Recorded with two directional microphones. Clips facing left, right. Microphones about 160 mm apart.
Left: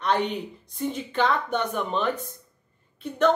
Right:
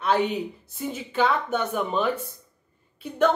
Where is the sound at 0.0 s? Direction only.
5° right (ahead or behind).